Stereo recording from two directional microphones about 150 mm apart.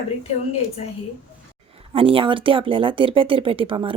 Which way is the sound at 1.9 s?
40° right (ahead or behind).